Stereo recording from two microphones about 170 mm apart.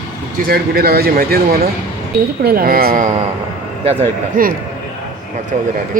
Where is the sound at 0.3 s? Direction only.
60° right (ahead or behind).